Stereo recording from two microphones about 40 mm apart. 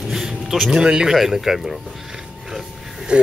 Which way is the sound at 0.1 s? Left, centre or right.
Centre.